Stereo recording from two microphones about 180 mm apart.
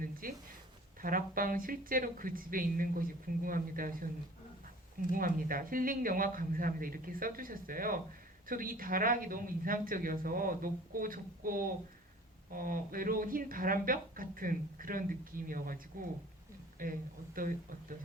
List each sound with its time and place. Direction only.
0.0 s a sound: 50° right (ahead or behind)
1.0 s a woman's voice: 50° right (ahead or behind)
5.1 s a woman's voice: 50° right (ahead or behind)